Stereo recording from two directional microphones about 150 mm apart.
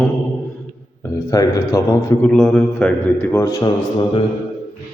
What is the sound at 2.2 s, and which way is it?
A man's voice, 5° left (ahead or behind).